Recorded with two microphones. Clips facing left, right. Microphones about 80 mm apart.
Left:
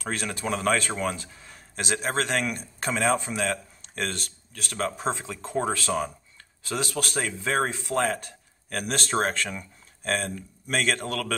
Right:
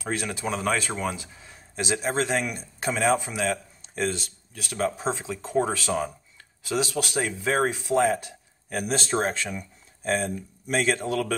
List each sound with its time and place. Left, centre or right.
0.0 s speech: centre